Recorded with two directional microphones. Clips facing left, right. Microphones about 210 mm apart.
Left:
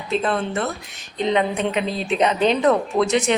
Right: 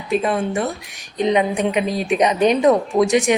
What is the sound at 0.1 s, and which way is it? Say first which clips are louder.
A woman's voice: right 3 dB; 15° right (ahead or behind).